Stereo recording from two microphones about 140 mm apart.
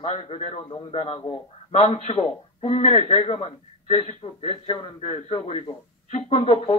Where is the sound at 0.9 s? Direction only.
45° left (ahead or behind).